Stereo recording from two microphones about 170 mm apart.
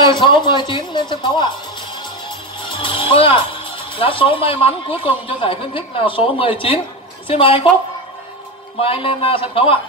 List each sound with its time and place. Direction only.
0.0 s speech: 25° left (ahead or behind)
2.2 s music: 30° left (ahead or behind)
3.9 s speech: 30° left (ahead or behind)
8.7 s speech: 35° left (ahead or behind)